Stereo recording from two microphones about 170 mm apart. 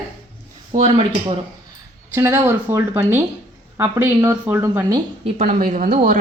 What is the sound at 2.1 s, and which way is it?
A woman's voice, 15° right (ahead or behind).